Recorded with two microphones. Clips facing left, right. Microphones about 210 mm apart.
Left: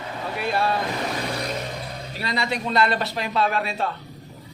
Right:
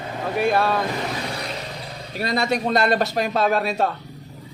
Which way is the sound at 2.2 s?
45° right (ahead or behind).